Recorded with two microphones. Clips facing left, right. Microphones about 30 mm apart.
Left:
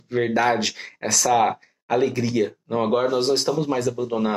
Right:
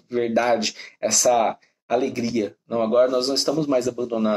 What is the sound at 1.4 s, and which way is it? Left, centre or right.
Speech, centre.